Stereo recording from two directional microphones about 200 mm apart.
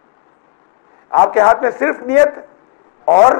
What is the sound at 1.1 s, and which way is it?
A man's voice, 25° left (ahead or behind).